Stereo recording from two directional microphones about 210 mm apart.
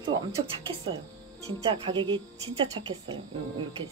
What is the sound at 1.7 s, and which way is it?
Speech, 25° right (ahead or behind).